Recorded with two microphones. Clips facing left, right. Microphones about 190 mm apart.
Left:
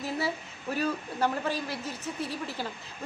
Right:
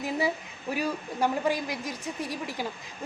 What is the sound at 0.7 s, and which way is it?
A woman's voice, 10° right (ahead or behind).